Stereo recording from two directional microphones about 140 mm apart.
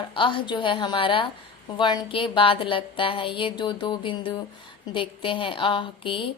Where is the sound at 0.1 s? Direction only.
35° left (ahead or behind).